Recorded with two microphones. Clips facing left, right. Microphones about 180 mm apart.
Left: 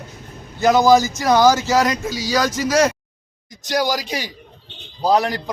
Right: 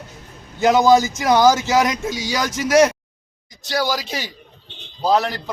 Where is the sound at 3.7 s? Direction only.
15° left (ahead or behind).